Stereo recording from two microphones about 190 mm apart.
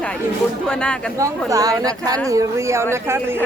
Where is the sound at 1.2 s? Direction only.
15° right (ahead or behind).